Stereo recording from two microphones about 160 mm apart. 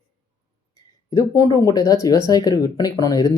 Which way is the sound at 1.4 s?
25° left (ahead or behind).